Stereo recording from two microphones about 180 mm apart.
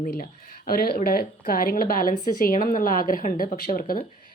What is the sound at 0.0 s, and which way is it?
A woman's voice, 50° left (ahead or behind).